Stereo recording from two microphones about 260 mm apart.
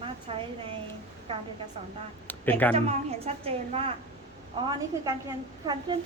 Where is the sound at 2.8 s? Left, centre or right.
Right.